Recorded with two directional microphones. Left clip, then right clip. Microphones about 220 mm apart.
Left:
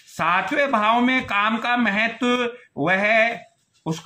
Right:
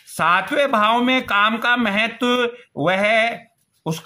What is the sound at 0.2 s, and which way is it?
Speech, 45° right (ahead or behind).